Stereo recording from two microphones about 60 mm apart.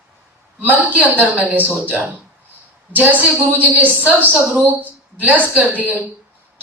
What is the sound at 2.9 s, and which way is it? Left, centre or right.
A woman's voice, right.